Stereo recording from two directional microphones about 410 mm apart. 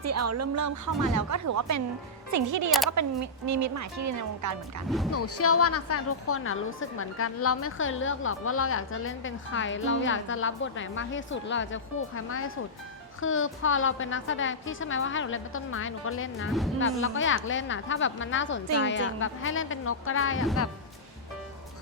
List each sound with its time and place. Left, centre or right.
0.0 s speech: right
5.1 s a woman's voice: left